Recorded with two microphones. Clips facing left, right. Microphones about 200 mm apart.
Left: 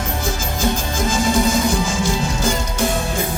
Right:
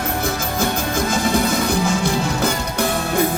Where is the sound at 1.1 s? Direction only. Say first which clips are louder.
Left 3 dB; 60° right (ahead or behind).